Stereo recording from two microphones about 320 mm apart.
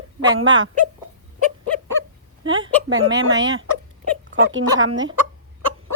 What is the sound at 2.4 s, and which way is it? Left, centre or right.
A woman's voice, right.